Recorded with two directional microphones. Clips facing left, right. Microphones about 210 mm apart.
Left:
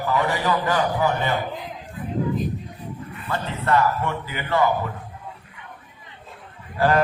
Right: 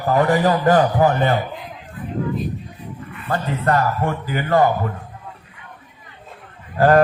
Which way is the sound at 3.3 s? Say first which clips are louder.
Right 3 dB; 50° right (ahead or behind).